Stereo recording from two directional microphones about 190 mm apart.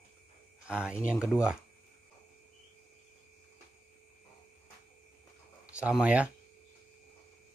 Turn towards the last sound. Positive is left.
turn(degrees=-5)  # may be behind; listen again after turning